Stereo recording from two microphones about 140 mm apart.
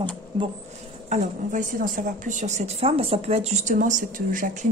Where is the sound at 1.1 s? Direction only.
70° right (ahead or behind).